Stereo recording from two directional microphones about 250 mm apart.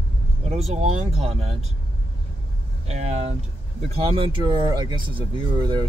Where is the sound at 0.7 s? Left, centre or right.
Right.